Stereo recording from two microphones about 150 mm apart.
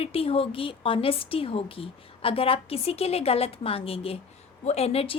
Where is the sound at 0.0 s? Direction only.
40° left (ahead or behind).